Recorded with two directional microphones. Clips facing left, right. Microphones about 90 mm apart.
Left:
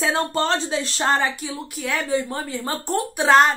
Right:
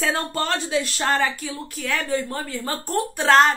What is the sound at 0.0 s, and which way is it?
Speech, 25° left (ahead or behind).